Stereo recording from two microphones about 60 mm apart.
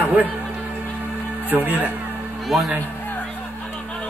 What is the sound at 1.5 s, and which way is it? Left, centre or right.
Speech, right.